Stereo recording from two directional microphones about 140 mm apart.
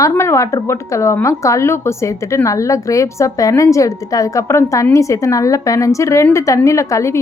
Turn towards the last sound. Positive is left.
turn(degrees=20)  # may be behind; listen again after turning